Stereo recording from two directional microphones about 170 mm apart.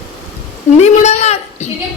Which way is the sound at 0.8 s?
40° left (ahead or behind).